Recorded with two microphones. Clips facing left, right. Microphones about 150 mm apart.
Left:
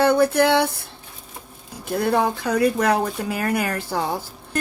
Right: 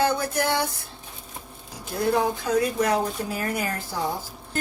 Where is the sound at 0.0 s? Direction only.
60° left (ahead or behind).